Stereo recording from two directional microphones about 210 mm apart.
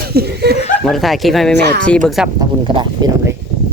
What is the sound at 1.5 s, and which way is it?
Speech, 55° right (ahead or behind).